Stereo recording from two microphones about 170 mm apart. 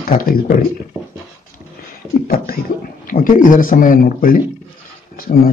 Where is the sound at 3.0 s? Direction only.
55° left (ahead or behind).